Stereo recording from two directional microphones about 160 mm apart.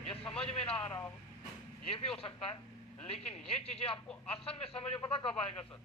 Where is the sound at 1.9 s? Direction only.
35° left (ahead or behind).